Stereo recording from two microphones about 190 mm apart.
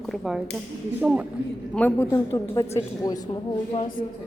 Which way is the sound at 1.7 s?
10° left (ahead or behind).